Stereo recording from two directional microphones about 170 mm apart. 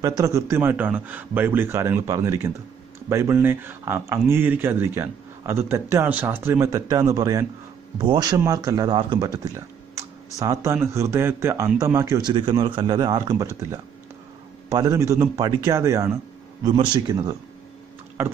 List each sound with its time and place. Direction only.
0.0 s speech: 15° right (ahead or behind)
12.3 s speech: 30° right (ahead or behind)
16.6 s speech: 30° right (ahead or behind)